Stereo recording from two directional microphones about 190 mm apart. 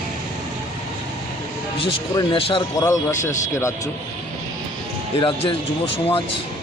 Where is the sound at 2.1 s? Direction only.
25° left (ahead or behind).